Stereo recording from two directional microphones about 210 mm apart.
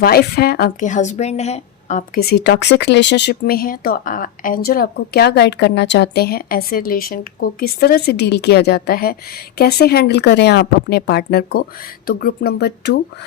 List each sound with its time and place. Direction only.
0.0 s a woman's voice: 45° left (ahead or behind)